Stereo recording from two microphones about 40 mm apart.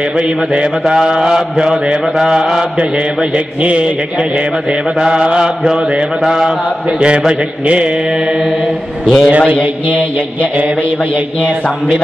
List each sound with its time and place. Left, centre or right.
0.9 s mantra: centre
5.1 s mantra: right
6.2 s mantra: centre
7.0 s mantra: right
9.0 s a man's voice: centre